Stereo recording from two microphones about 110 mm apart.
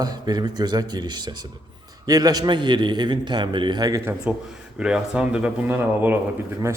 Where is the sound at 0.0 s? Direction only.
40° right (ahead or behind).